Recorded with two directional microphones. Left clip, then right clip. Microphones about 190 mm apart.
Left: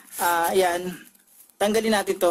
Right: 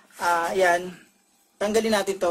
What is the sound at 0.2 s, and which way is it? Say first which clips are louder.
Speech: left 1 dB; 60° left (ahead or behind).